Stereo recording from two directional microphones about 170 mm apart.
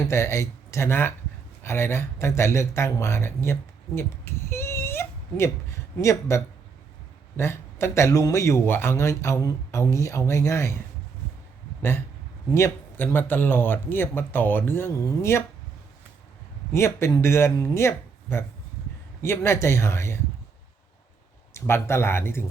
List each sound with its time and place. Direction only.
0.1 s speech: 15° left (ahead or behind)
11.8 s speech: 15° left (ahead or behind)
16.7 s speech: 15° left (ahead or behind)
21.5 s speech: 15° left (ahead or behind)